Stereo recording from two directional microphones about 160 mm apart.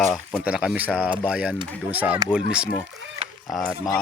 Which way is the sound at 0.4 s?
5° right (ahead or behind).